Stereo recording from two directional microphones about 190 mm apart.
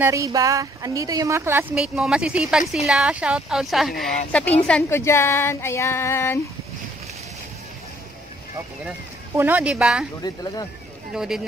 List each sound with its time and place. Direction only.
0.0 s a woman's voice: 15° right (ahead or behind); by 6.4 s 15° left (ahead or behind)
9.3 s a woman's voice: 10° right (ahead or behind)
10.2 s speech: 20° left (ahead or behind)
11.1 s a woman's voice: 5° right (ahead or behind)